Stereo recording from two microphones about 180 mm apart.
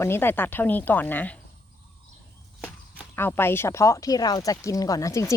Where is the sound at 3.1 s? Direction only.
10° left (ahead or behind).